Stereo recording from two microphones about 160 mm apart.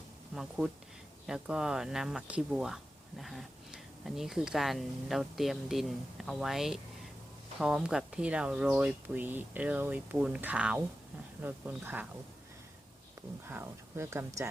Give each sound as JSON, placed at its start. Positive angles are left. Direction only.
{"t": 0.3, "sound": "speech", "side_deg": -5}
{"t": 13.5, "sound": "speech", "side_deg": -15}